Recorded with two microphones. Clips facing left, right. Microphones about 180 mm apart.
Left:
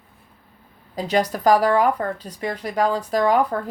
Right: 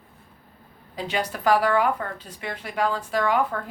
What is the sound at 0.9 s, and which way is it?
Speech, 40° left (ahead or behind).